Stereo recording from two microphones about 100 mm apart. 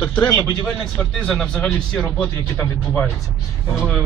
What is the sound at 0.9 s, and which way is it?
Speech, 5° left (ahead or behind).